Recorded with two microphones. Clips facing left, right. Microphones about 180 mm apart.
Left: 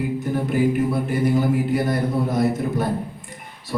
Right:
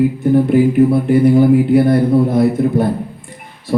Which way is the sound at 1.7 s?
55° right (ahead or behind).